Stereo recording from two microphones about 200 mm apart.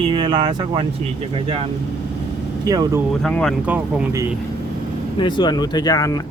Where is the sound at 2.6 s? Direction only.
20° right (ahead or behind).